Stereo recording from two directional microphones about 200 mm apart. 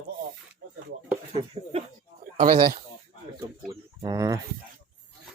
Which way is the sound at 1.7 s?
30° right (ahead or behind).